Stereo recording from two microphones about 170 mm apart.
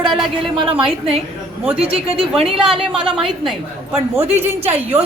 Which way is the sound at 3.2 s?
30° right (ahead or behind).